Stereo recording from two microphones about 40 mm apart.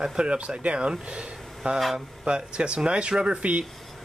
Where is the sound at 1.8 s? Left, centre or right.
Centre.